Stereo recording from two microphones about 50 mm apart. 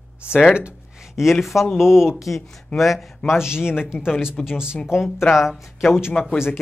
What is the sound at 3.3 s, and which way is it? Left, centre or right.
Speech, centre.